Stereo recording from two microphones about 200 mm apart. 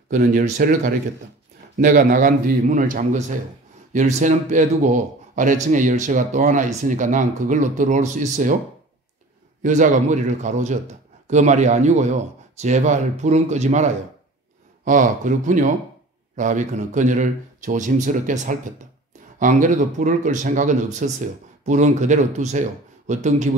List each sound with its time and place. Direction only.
0.1 s speech: 45° right (ahead or behind)
9.6 s speech: 40° right (ahead or behind)